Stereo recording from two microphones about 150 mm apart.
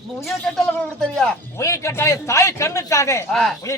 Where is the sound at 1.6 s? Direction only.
20° left (ahead or behind).